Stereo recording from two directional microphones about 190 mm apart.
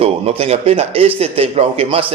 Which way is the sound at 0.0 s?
30° right (ahead or behind).